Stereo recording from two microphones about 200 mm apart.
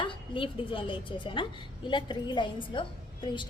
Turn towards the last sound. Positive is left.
turn(degrees=25)  # may be behind; listen again after turning